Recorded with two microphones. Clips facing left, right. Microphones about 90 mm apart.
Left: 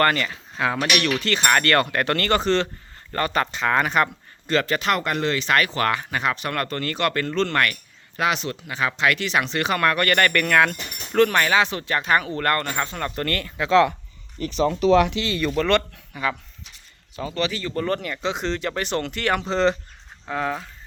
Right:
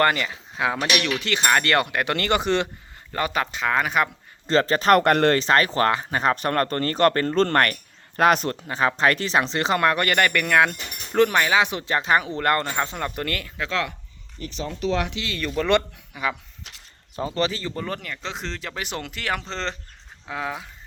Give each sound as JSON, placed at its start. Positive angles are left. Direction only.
{"t": 0.0, "sound": "speech", "side_deg": -15}
{"t": 4.4, "sound": "speech", "side_deg": -30}
{"t": 4.9, "sound": "speech", "side_deg": -55}
{"t": 5.4, "sound": "speech", "side_deg": -35}
{"t": 14.4, "sound": "speech", "side_deg": 80}
{"t": 15.5, "sound": "speech", "side_deg": -15}
{"t": 17.2, "sound": "speech", "side_deg": -35}
{"t": 17.7, "sound": "speech", "side_deg": -5}
{"t": 20.2, "sound": "speech", "side_deg": -5}